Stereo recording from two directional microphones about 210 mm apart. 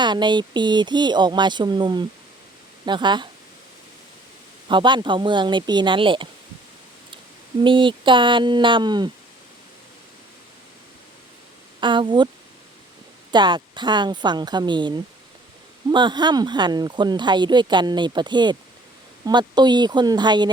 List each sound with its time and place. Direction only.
0.0 s speech: 20° right (ahead or behind)
4.7 s speech: 20° right (ahead or behind)
7.6 s speech: 25° right (ahead or behind)
11.8 s speech: 20° right (ahead or behind)
13.3 s speech: 20° right (ahead or behind)